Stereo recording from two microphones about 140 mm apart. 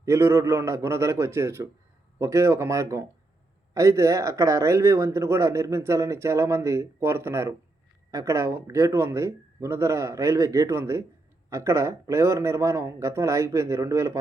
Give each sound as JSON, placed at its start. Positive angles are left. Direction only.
{"t": 0.0, "sound": "speech", "side_deg": -20}